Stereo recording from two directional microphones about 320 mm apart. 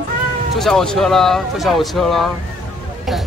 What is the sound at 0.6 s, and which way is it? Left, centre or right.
Speech, centre.